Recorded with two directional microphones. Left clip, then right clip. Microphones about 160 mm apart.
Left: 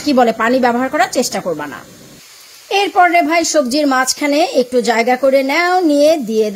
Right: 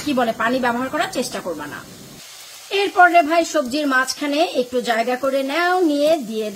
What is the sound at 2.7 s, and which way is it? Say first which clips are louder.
A woman's voice: left 2 dB; 35° left (ahead or behind).